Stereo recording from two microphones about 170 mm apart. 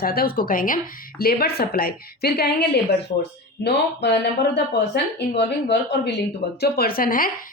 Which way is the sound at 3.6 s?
85° left.